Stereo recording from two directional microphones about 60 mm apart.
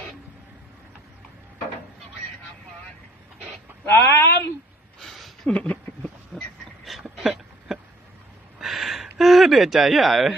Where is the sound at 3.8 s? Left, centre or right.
Left.